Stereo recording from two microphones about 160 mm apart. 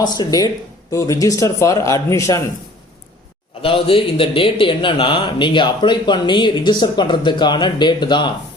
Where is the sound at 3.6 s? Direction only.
35° left (ahead or behind).